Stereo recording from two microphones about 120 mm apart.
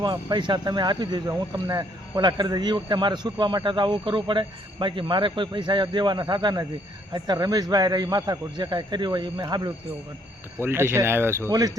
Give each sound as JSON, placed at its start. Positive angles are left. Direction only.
{"t": 0.0, "sound": "speech", "side_deg": -35}
{"t": 10.6, "sound": "speech", "side_deg": -20}